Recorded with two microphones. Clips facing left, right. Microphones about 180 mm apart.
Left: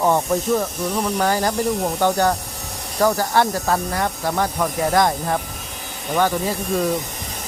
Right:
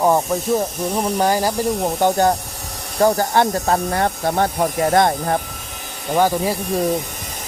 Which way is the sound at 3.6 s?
30° right (ahead or behind).